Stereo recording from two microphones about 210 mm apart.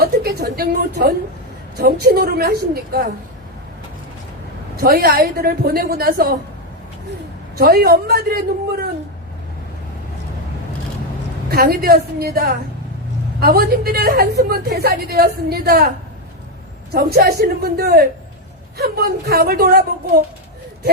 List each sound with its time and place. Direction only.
0.0 s a woman's voice: 45° right (ahead or behind)
4.8 s a woman's voice: 50° right (ahead or behind)
7.6 s a woman's voice: 50° right (ahead or behind)
11.5 s a woman's voice: 45° right (ahead or behind)
16.9 s a woman's voice: 45° right (ahead or behind)